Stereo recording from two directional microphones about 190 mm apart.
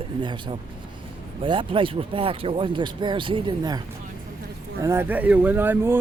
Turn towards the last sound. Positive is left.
turn(degrees=-10)  # may be behind; listen again after turning